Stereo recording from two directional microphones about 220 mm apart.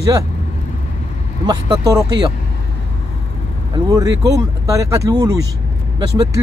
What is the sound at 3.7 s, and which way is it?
Speech, 15° right (ahead or behind).